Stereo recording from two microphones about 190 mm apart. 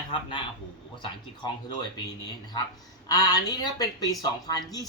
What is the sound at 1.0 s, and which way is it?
Speech, 25° left (ahead or behind).